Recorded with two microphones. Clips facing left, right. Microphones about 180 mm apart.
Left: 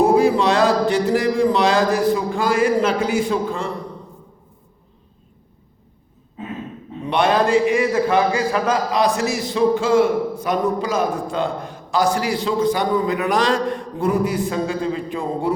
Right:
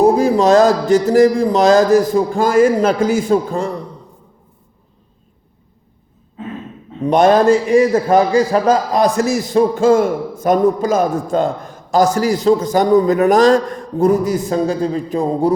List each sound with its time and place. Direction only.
0.0 s a man's voice: 40° right (ahead or behind)
7.0 s a man's voice: 45° right (ahead or behind)
9.0 s a man's voice: 45° right (ahead or behind)